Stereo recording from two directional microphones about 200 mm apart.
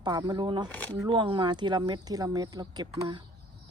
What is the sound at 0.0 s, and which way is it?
Speech, 20° right (ahead or behind).